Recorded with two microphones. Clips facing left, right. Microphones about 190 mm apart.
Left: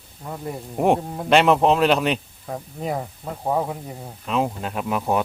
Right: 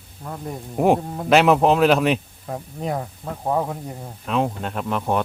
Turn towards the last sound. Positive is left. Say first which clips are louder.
# even
turn(degrees=5)  # may be behind; listen again after turning